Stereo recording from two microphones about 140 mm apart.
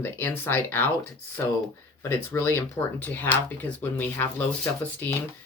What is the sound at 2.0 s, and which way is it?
Speech, 20° left (ahead or behind).